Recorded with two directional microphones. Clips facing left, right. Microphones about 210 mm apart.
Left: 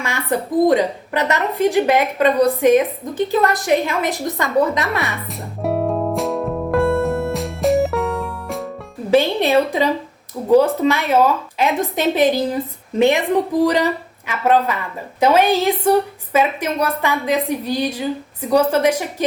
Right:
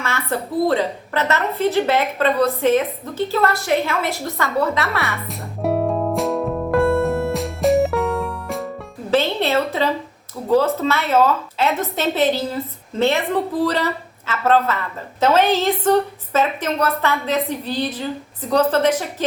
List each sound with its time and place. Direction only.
0.0 s a woman's voice: 15° left (ahead or behind)
5.1 s music: centre (ahead or behind)
9.0 s a woman's voice: 15° left (ahead or behind)